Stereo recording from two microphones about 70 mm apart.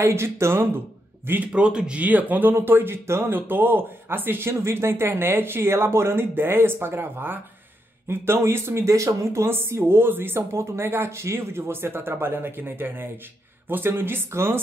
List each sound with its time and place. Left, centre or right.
0.0 s a man's voice: right
1.5 s speech: centre; by 14.6 s right